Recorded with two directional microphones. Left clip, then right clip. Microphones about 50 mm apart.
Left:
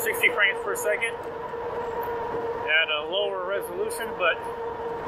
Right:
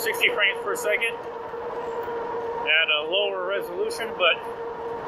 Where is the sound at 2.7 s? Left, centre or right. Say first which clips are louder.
Right 3 dB; right.